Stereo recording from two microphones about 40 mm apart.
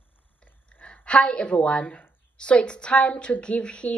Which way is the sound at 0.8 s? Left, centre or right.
Left.